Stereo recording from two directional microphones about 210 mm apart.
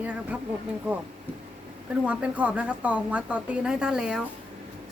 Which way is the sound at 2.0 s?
5° right (ahead or behind).